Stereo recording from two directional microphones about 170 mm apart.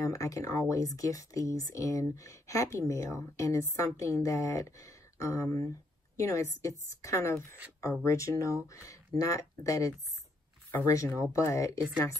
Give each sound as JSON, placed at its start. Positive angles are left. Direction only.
{"t": 0.0, "sound": "a woman's voice", "side_deg": 20}